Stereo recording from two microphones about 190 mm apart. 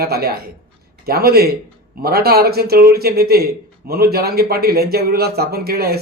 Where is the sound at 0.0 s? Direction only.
55° right (ahead or behind).